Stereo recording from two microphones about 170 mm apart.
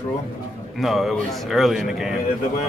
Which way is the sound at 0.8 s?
Centre (ahead or behind).